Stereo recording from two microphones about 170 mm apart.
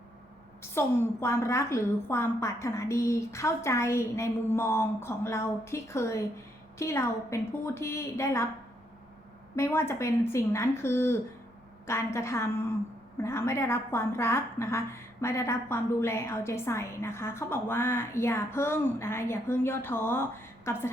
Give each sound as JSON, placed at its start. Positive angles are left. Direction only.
{"t": 0.6, "sound": "a woman's voice", "side_deg": 15}
{"t": 9.6, "sound": "a woman's voice", "side_deg": 15}